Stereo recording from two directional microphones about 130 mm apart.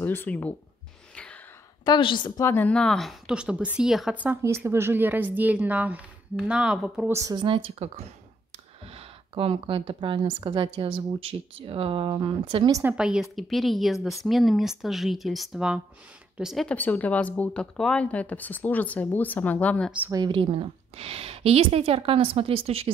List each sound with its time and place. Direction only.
0.0 s speech: 15° left (ahead or behind)
1.1 s gasp: 5° left (ahead or behind)
1.9 s a woman's voice: 40° left (ahead or behind)
2.4 s a woman's voice: 15° left (ahead or behind); by 7.1 s 5° right (ahead or behind)
7.1 s speech: 25° right (ahead or behind)
7.3 s a woman's voice: 40° right (ahead or behind)
12.8 s speech: 5° right (ahead or behind)
16.6 s speech: 10° left (ahead or behind)
20.1 s a woman's voice: 35° right (ahead or behind)